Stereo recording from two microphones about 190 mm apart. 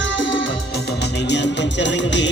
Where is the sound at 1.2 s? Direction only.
65° left (ahead or behind).